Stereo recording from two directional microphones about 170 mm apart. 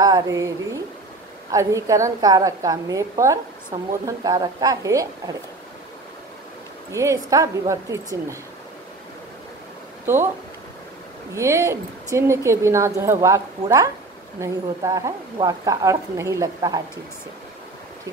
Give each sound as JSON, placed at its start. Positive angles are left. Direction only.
{"t": 0.0, "sound": "a woman's voice", "side_deg": -20}
{"t": 6.9, "sound": "a woman's voice", "side_deg": -15}
{"t": 10.0, "sound": "a woman's voice", "side_deg": -15}
{"t": 11.3, "sound": "a woman's voice", "side_deg": -15}